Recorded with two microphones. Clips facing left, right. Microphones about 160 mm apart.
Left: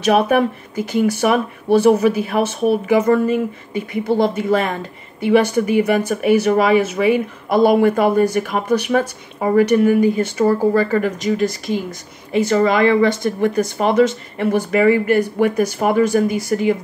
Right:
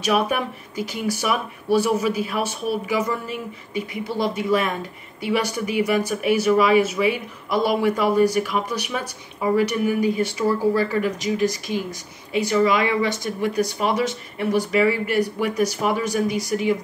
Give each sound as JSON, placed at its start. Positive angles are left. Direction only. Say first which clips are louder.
{"t": 0.0, "sound": "speech", "louder": "left 7 dB", "side_deg": 55}